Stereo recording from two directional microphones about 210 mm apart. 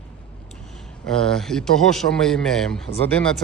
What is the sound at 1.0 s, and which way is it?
A man's voice, 5° left (ahead or behind).